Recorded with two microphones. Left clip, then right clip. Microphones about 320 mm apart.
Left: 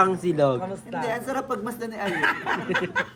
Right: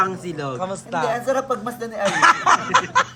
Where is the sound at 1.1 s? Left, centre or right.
Centre.